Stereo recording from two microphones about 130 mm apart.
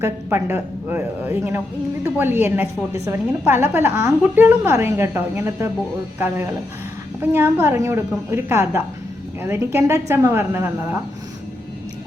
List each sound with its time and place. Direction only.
0.0 s a woman's voice: 15° right (ahead or behind)